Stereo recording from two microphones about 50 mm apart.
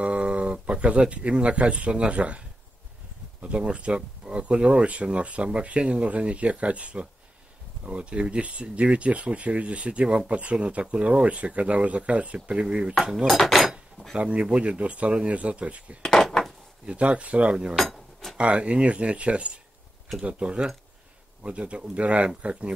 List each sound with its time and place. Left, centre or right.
0.0 s speech: right
13.3 s cutlery: centre
14.1 s speech: right
16.0 s a sound: centre
16.8 s speech: right
17.7 s cutlery: centre
18.4 s speech: right